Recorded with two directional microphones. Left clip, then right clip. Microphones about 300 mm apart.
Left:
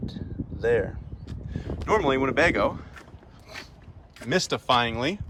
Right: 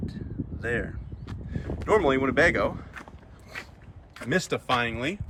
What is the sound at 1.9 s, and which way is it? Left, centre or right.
Speech, centre.